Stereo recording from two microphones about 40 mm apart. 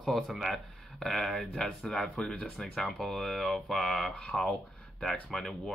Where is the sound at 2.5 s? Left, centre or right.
Centre.